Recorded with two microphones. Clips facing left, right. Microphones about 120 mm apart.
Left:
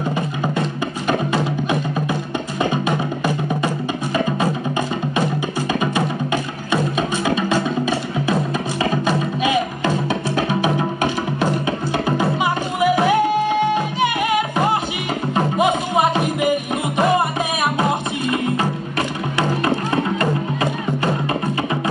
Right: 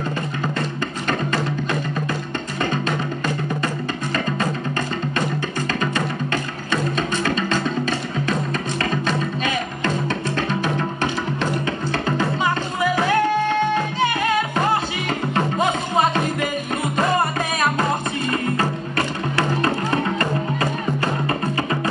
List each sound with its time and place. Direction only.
1.0 s music: 15° left (ahead or behind)
3.6 s music: 15° left (ahead or behind)